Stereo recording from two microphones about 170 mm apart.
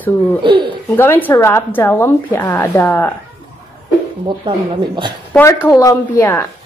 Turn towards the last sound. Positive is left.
turn(degrees=20)  # may be behind; listen again after turning